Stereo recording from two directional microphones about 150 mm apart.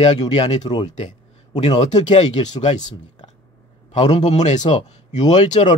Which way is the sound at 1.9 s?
50° left (ahead or behind).